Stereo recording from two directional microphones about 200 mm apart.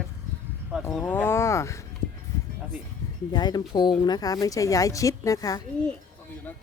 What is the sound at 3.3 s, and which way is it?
Speech, 20° left (ahead or behind).